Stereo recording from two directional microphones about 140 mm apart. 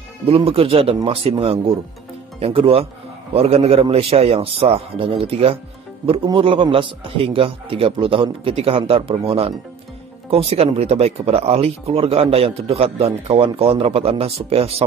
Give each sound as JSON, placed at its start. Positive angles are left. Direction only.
{"t": 0.3, "sound": "a man's voice", "side_deg": -45}